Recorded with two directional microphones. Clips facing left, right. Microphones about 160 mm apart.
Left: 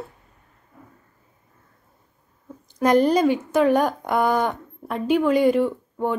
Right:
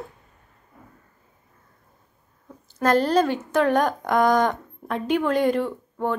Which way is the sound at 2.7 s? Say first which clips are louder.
Left 2 dB; 15° left (ahead or behind).